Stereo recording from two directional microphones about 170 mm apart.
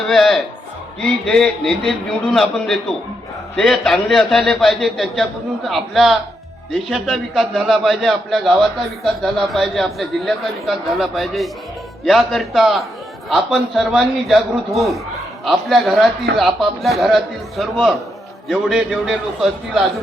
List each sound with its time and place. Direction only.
0.1 s a man's voice: centre (ahead or behind)